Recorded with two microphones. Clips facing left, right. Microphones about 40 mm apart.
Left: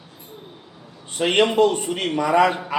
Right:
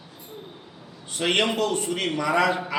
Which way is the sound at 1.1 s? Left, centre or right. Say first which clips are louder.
Left 5 dB; left.